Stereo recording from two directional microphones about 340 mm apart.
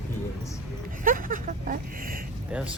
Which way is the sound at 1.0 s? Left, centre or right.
Right.